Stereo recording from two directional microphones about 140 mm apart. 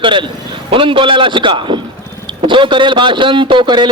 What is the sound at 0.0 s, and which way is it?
A man's voice, 35° right (ahead or behind).